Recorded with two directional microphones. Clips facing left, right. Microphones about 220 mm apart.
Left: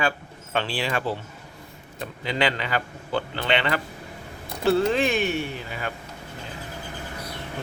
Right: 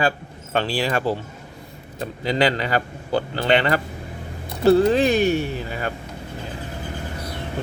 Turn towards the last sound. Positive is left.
turn(degrees=-40)  # may be behind; listen again after turning